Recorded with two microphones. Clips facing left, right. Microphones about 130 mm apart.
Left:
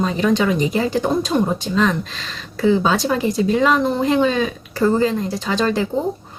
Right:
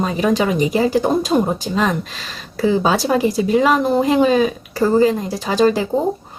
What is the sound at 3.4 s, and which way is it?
Speech, 15° right (ahead or behind).